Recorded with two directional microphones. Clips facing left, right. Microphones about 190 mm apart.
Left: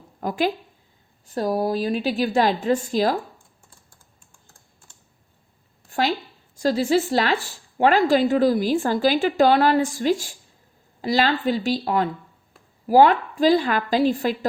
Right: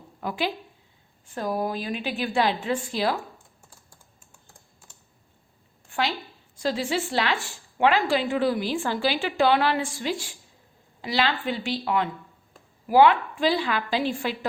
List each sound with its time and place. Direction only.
0.2 s speech: 45° left (ahead or behind)
5.9 s speech: 40° left (ahead or behind)